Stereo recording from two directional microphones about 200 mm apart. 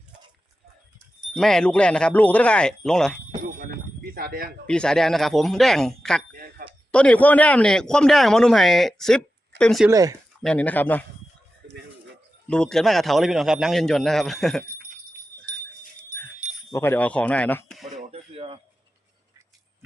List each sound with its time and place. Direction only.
1.3 s speech: centre (ahead or behind)
4.1 s speech: 45° right (ahead or behind)
4.6 s speech: 5° left (ahead or behind)
6.3 s a sound: 45° right (ahead or behind)
6.9 s speech: 5° left (ahead or behind)
9.9 s speech: 15° right (ahead or behind)
10.4 s speech: 5° left (ahead or behind)
12.5 s speech: 5° left (ahead or behind)
16.0 s a sound: 10° left (ahead or behind)
16.7 s speech: 10° left (ahead or behind)
17.9 s a sound: 30° right (ahead or behind)